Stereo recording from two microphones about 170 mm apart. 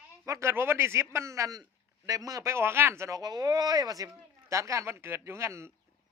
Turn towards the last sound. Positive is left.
turn(degrees=-15)  # may be behind; listen again after turning